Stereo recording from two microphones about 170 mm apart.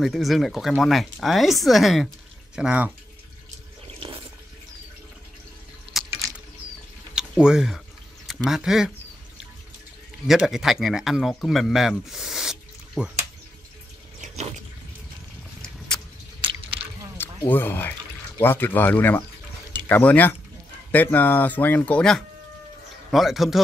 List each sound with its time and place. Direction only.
0.0 s speech: centre (ahead or behind)
3.8 s water: 35° right (ahead or behind)
7.2 s speech: 5° right (ahead or behind)
10.2 s speech: centre (ahead or behind)
14.2 s a sound: 40° right (ahead or behind)
17.2 s speech: 10° left (ahead or behind)